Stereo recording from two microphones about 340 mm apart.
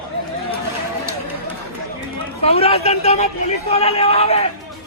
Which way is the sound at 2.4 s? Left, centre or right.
Centre.